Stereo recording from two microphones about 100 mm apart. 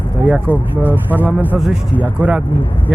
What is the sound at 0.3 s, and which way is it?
Speech, 15° right (ahead or behind).